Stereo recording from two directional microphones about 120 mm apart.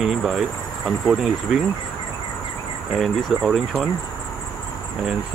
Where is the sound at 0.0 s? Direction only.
5° right (ahead or behind).